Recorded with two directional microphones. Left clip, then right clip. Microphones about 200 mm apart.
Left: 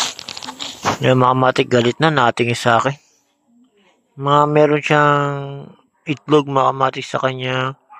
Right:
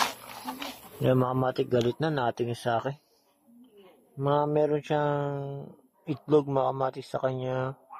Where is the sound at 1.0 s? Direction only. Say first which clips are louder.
Left 12 dB; 15° left (ahead or behind).